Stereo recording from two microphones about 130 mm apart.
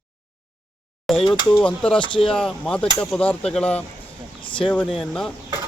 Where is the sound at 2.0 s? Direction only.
40° left (ahead or behind).